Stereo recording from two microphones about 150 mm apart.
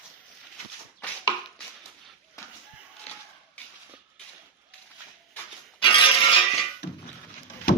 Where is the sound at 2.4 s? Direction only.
20° left (ahead or behind).